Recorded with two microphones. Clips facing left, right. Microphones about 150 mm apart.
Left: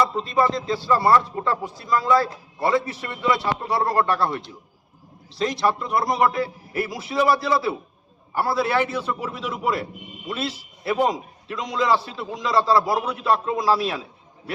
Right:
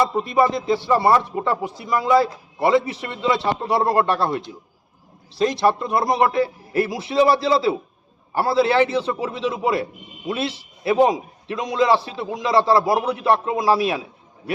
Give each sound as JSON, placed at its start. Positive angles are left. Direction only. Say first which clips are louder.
{"t": 0.2, "sound": "a man's voice", "louder": "right 3 dB", "side_deg": -20}